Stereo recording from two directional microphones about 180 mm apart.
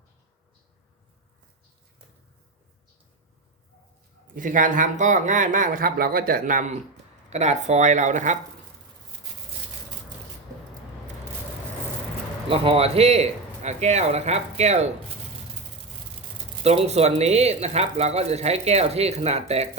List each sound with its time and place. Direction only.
4.3 s speech: 50° right (ahead or behind)
12.5 s speech: 30° right (ahead or behind)
16.6 s speech: 35° right (ahead or behind)